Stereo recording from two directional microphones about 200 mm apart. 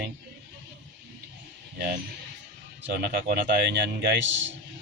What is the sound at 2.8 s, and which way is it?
A man's voice, 50° right (ahead or behind).